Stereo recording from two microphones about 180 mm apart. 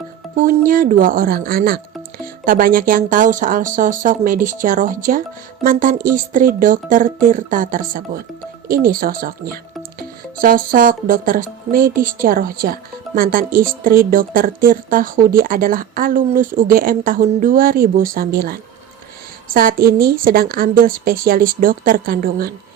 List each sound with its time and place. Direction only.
0.6 s speech: 50° right (ahead or behind)